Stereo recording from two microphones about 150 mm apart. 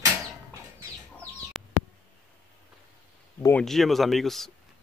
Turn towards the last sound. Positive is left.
turn(degrees=0)  # may be behind; listen again after turning